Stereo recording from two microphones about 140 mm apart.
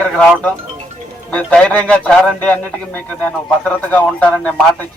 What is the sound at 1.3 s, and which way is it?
Speech, 10° left (ahead or behind).